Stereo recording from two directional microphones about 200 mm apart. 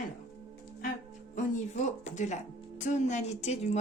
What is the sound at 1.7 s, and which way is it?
Speech, 35° left (ahead or behind).